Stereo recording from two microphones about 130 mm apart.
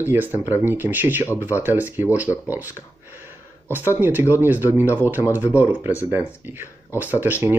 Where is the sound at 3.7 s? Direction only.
15° right (ahead or behind).